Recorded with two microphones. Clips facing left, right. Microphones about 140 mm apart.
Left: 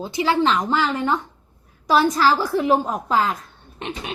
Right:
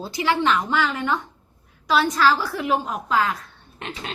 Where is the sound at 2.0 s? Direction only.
25° left (ahead or behind).